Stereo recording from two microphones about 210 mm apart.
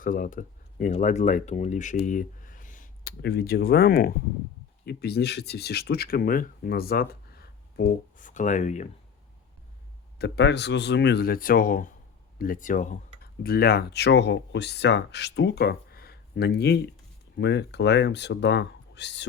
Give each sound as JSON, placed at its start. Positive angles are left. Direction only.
{"t": 0.0, "sound": "speech", "side_deg": 40}
{"t": 8.2, "sound": "speech", "side_deg": 35}
{"t": 10.2, "sound": "speech", "side_deg": 55}